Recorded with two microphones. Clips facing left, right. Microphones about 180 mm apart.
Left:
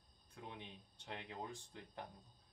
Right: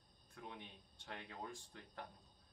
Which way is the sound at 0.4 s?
20° left (ahead or behind).